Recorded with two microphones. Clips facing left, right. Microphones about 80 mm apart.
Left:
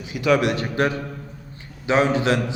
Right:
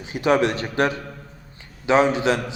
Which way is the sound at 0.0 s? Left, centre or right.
Right.